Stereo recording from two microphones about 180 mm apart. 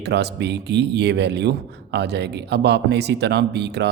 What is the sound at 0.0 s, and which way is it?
A man's voice, 70° right (ahead or behind).